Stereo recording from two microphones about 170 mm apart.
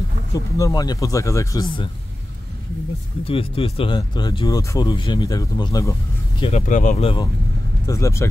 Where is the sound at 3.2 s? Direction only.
35° left (ahead or behind).